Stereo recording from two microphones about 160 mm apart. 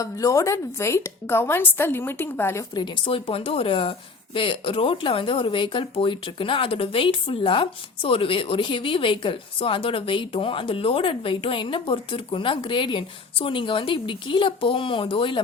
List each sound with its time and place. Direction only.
0.0 s a woman's voice: 20° left (ahead or behind)
2.7 s speech: 30° left (ahead or behind)